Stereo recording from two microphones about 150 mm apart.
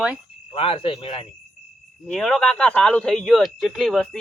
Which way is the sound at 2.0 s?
5° left (ahead or behind).